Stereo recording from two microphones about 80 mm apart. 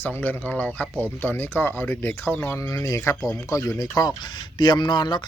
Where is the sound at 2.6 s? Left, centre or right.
Left.